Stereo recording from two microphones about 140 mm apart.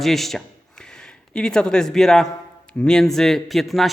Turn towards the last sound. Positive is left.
turn(degrees=0)  # may be behind; listen again after turning